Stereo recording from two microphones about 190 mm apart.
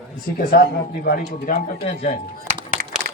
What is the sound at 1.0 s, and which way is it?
Speech, 55° left (ahead or behind).